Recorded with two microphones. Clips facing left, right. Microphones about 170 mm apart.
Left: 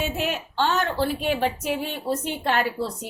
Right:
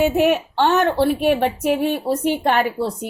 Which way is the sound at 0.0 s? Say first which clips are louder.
Right 11 dB; 60° right (ahead or behind).